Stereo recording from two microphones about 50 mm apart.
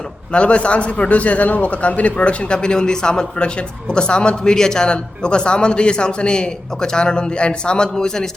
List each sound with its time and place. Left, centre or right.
0.3 s a man's voice: left